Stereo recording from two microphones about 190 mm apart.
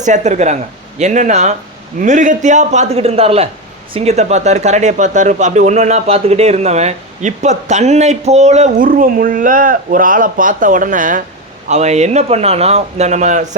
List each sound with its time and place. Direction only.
0.0 s speech: 40° right (ahead or behind)